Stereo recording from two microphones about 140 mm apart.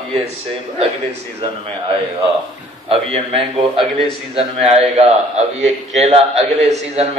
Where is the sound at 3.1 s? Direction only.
45° right (ahead or behind).